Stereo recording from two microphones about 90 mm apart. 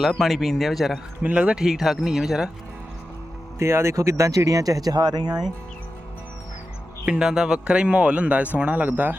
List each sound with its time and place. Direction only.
0.1 s speech: centre (ahead or behind)
1.2 s speech: 15° right (ahead or behind)
3.6 s speech: 30° right (ahead or behind); by 5.3 s 55° right (ahead or behind)
7.0 s a man's voice: 10° right (ahead or behind)